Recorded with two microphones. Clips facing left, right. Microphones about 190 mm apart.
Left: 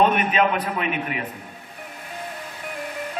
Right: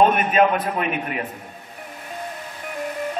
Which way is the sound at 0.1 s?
45° right (ahead or behind).